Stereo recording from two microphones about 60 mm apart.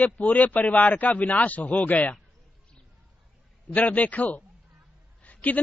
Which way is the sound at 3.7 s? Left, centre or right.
Left.